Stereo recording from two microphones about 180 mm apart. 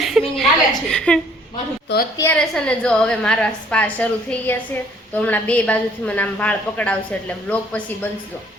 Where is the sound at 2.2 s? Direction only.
5° left (ahead or behind).